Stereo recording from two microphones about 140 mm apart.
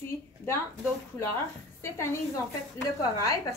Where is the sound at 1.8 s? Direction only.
20° left (ahead or behind).